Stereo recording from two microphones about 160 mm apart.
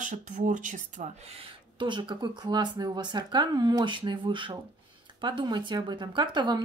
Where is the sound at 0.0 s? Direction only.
50° right (ahead or behind).